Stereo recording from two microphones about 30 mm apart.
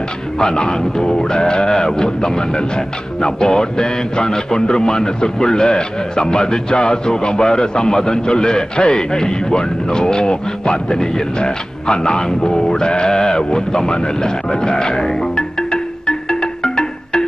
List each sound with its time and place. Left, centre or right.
0.4 s speech: left